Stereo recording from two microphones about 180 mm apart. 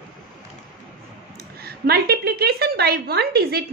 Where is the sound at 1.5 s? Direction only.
60° right (ahead or behind).